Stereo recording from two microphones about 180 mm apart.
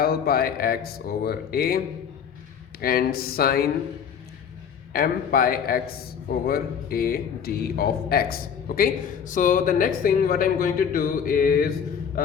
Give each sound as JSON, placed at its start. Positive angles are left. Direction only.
{"t": 0.0, "sound": "speech", "side_deg": 55}
{"t": 2.8, "sound": "speech", "side_deg": 55}
{"t": 4.9, "sound": "a man's voice", "side_deg": 55}